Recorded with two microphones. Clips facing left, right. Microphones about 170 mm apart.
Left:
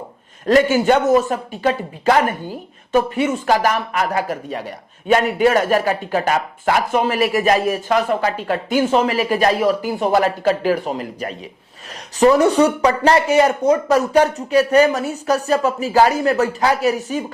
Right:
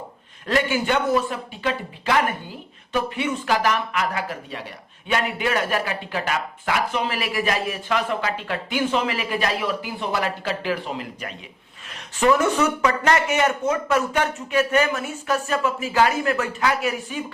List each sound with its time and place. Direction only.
0.4 s a man's voice: 40° left (ahead or behind)